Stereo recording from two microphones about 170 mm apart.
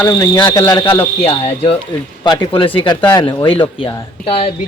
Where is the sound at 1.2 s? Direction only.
35° left (ahead or behind).